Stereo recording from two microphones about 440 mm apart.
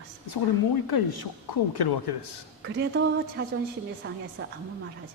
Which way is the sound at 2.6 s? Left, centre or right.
Right.